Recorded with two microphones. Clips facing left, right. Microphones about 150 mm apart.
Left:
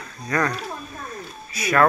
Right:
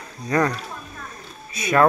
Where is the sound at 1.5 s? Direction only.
25° right (ahead or behind).